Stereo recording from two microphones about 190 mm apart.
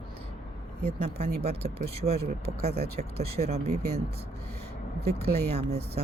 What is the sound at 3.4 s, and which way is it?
Speech, 35° right (ahead or behind).